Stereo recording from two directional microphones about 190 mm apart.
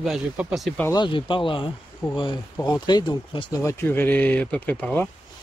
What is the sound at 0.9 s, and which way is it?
Speech, 25° left (ahead or behind).